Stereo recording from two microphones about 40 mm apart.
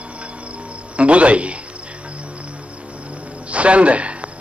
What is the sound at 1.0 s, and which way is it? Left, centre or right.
Speech, right.